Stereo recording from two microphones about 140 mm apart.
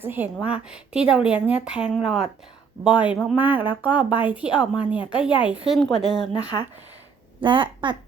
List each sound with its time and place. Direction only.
0.0 s speech: 15° right (ahead or behind)
6.3 s speech: 30° left (ahead or behind)
7.4 s a woman's voice: 35° right (ahead or behind)